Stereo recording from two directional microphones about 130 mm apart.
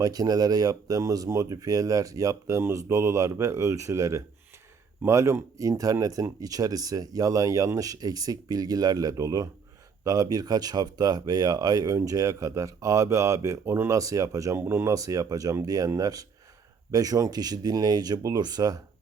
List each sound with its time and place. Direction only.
0.0 s speech: 30° right (ahead or behind)